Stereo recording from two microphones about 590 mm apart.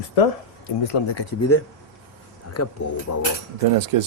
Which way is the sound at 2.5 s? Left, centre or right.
Left.